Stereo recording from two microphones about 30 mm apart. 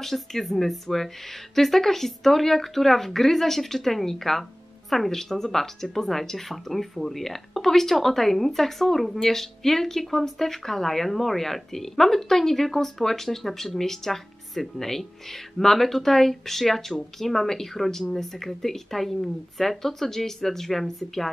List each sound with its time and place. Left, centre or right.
0.0 s speech: centre